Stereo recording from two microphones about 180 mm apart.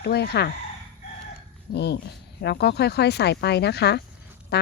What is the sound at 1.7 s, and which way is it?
Speech, 65° left (ahead or behind).